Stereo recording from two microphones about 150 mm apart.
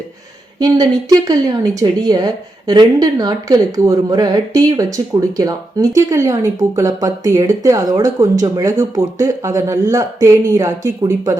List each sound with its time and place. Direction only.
0.6 s speech: 25° right (ahead or behind)